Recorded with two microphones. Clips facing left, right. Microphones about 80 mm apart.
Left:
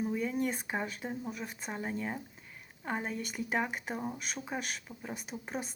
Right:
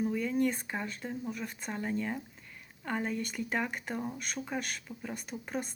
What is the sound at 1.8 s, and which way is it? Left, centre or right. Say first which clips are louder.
Speech: right 3 dB; centre.